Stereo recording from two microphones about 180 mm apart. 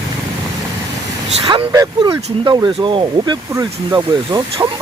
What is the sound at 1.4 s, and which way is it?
Speech, 30° right (ahead or behind).